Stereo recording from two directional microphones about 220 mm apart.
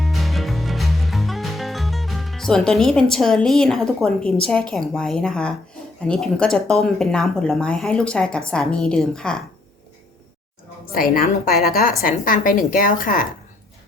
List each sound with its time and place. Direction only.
0.0 s music: centre (ahead or behind)
4.7 s speech: centre (ahead or behind)
10.9 s a woman's voice: 40° left (ahead or behind)